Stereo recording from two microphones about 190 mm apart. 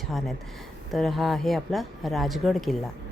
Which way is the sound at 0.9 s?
Centre (ahead or behind).